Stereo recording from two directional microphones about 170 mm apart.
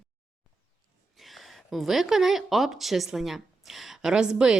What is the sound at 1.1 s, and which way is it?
A woman's voice, centre (ahead or behind).